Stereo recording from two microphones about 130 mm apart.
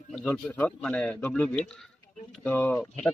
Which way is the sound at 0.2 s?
15° left (ahead or behind).